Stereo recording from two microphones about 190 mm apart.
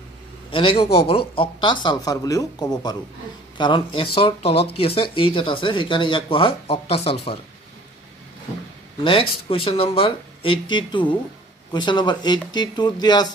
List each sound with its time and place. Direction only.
0.5 s speech: 25° left (ahead or behind)
9.0 s speech: 30° left (ahead or behind)